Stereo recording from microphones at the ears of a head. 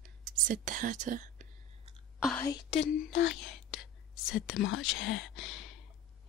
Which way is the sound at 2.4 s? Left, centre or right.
Left.